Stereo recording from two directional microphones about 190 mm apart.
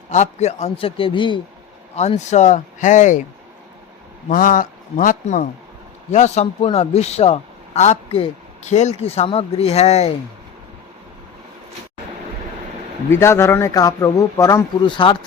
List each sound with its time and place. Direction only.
0.1 s a man's voice: 35° left (ahead or behind)
2.0 s a man's voice: 35° left (ahead or behind)
4.3 s a man's voice: 45° left (ahead or behind)
13.1 s speech: 15° left (ahead or behind)